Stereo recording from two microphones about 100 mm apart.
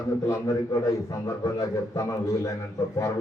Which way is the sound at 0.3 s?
35° left (ahead or behind).